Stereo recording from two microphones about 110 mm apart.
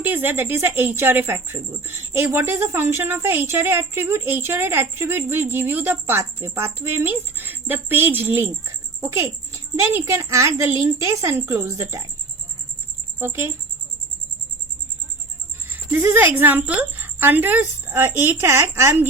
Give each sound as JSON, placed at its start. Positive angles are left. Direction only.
{"t": 0.0, "sound": "speech", "side_deg": -20}
{"t": 13.1, "sound": "speech", "side_deg": -20}
{"t": 15.7, "sound": "a sound", "side_deg": -15}
{"t": 16.0, "sound": "a woman's voice", "side_deg": -15}